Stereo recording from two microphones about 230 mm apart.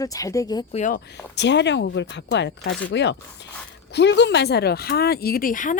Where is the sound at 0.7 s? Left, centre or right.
Left.